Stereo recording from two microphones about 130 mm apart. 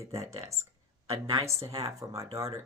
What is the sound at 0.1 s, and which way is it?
Speech, 25° right (ahead or behind).